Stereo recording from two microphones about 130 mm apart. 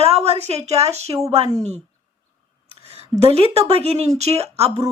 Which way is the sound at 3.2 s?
55° right (ahead or behind).